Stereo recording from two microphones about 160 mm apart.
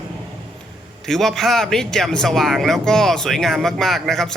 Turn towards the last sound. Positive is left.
turn(degrees=0)  # may be behind; listen again after turning